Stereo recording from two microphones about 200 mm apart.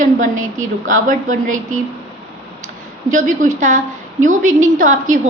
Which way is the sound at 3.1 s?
40° right (ahead or behind).